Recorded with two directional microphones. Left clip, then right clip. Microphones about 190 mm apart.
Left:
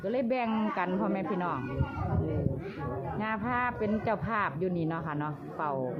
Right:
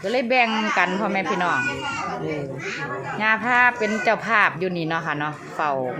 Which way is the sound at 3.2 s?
25° right (ahead or behind).